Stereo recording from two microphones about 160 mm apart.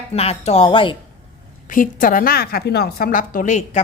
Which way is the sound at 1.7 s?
60° left (ahead or behind).